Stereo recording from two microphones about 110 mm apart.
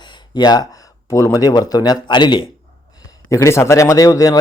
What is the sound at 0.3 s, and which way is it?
Speech, 40° left (ahead or behind).